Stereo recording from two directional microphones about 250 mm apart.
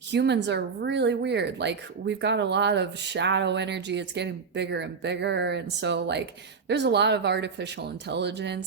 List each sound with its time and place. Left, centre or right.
0.1 s speech: right